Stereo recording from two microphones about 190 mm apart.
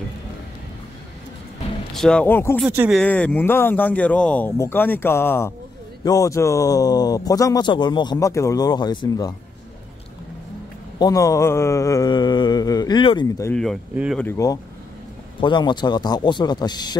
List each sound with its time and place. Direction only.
2.0 s speech: 5° left (ahead or behind)
2.6 s speech: 10° right (ahead or behind)
3.0 s speech: 5° left (ahead or behind)
11.0 s speech: 20° left (ahead or behind)
13.5 s speech: 5° left (ahead or behind); by 16.8 s 20° left (ahead or behind)